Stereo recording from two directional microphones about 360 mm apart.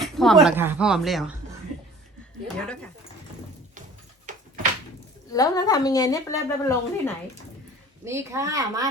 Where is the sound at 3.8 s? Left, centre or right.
Right.